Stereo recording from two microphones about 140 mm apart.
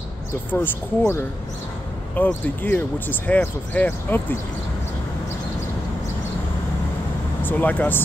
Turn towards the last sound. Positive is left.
turn(degrees=10)  # may be behind; listen again after turning